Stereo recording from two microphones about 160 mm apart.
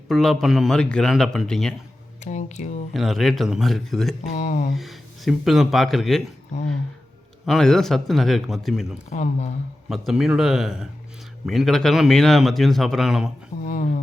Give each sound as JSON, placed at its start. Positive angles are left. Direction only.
{"t": 0.1, "sound": "a man's voice", "side_deg": 0}
{"t": 2.2, "sound": "speech", "side_deg": 45}
{"t": 2.9, "sound": "a man's voice", "side_deg": 0}
{"t": 4.4, "sound": "speech", "side_deg": 55}
{"t": 4.7, "sound": "a man's voice", "side_deg": 0}
{"t": 7.4, "sound": "a man's voice", "side_deg": 0}
{"t": 9.0, "sound": "speech", "side_deg": 50}
{"t": 9.9, "sound": "a man's voice", "side_deg": 0}